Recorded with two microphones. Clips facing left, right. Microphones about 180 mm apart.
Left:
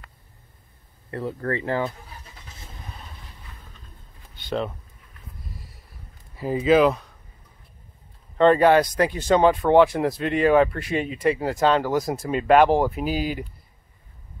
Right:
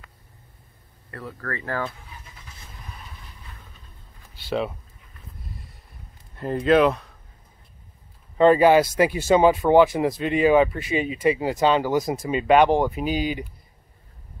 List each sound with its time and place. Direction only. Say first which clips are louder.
1.1 s speech: left 7 dB; 25° left (ahead or behind)
4.5 s speech: right 1 dB; 5° right (ahead or behind)
5.4 s horse: right 1 dB; centre (ahead or behind)
6.3 s speech: even; centre (ahead or behind)
8.4 s speech: right 1 dB; 5° right (ahead or behind)